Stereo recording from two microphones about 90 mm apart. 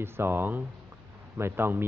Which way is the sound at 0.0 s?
25° right (ahead or behind).